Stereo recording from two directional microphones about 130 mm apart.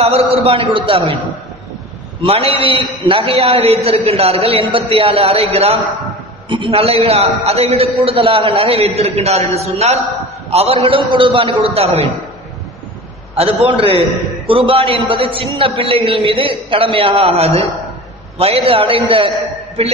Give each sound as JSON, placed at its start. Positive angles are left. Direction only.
{"t": 0.3, "sound": "a man's voice", "side_deg": -45}
{"t": 2.2, "sound": "a man's voice", "side_deg": -50}
{"t": 13.4, "sound": "a man's voice", "side_deg": -45}